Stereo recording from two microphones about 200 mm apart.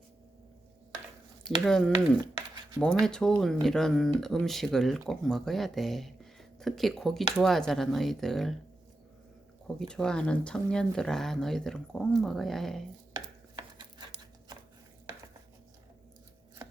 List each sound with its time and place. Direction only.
1.5 s speech: 5° left (ahead or behind)
9.6 s speech: 5° left (ahead or behind)
13.1 s a sound: 20° right (ahead or behind)